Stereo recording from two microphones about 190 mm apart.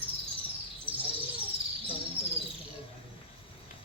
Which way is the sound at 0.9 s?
30° right (ahead or behind).